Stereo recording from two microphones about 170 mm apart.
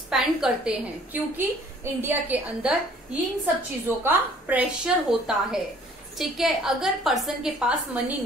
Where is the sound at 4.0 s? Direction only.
10° right (ahead or behind).